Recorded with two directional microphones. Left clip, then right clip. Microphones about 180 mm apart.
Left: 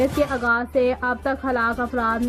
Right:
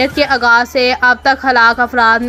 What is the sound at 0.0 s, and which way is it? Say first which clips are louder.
A woman's voice: right 9 dB; 15° right (ahead or behind).